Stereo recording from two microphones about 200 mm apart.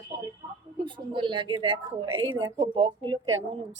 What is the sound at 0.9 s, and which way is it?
Speech, 25° right (ahead or behind).